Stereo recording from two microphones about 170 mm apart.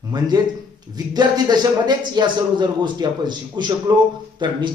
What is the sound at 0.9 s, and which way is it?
A man's voice, 25° right (ahead or behind).